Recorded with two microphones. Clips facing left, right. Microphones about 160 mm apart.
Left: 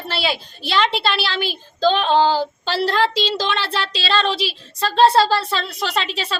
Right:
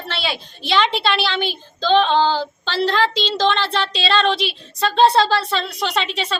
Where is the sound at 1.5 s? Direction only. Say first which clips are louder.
Left 2 dB; 40° left (ahead or behind).